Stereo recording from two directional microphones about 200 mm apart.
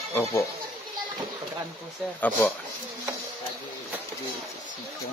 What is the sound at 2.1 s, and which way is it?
Speech, 10° left (ahead or behind).